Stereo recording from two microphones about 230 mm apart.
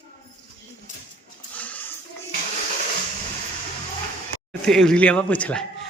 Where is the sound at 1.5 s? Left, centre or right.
Centre.